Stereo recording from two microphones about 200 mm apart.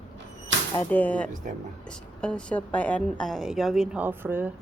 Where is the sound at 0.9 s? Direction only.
10° left (ahead or behind).